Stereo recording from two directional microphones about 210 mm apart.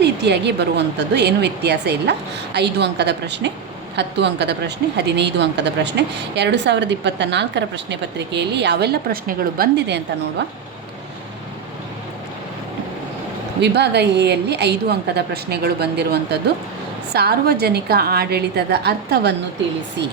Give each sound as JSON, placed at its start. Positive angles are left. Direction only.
{"t": 0.0, "sound": "a woman's voice", "side_deg": -55}
{"t": 13.6, "sound": "a woman's voice", "side_deg": -55}